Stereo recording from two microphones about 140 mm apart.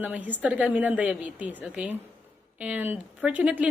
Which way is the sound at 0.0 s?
10° right (ahead or behind).